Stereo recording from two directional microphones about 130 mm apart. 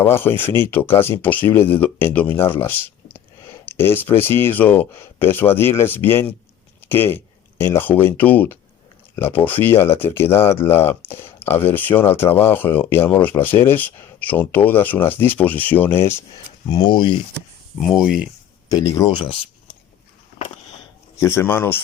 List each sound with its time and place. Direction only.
0.0 s speech: 15° left (ahead or behind); by 17.2 s 35° left (ahead or behind)
17.7 s speech: centre (ahead or behind)
18.7 s speech: 30° left (ahead or behind)
19.1 s speech: 40° left (ahead or behind)
21.2 s speech: 20° left (ahead or behind)